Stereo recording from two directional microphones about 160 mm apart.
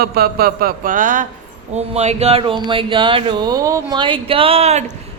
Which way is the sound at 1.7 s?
40° right (ahead or behind).